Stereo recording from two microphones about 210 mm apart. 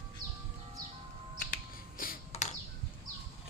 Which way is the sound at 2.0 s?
40° left (ahead or behind).